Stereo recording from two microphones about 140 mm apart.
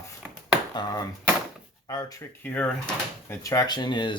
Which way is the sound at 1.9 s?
25° left (ahead or behind).